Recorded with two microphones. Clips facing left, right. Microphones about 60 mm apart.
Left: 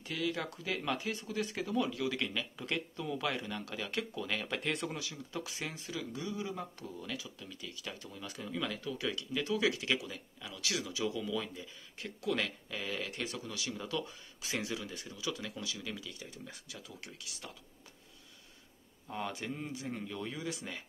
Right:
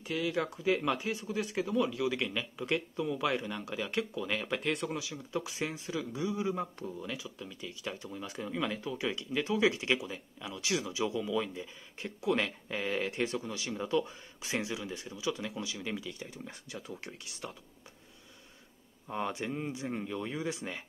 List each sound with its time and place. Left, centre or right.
0.0 s speech: centre
12.7 s speech: right
19.0 s speech: right